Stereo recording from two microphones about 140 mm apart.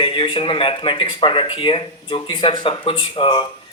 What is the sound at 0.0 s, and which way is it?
Speech, 40° left (ahead or behind).